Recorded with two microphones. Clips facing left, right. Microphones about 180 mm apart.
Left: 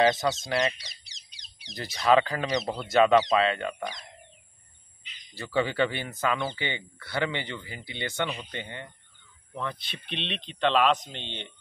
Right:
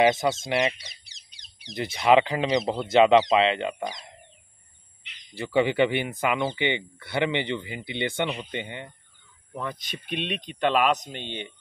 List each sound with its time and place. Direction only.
0.0 s speech: 25° right (ahead or behind)
0.8 s fowl: 55° right (ahead or behind)
1.8 s speech: 25° right (ahead or behind)
5.3 s speech: 20° right (ahead or behind)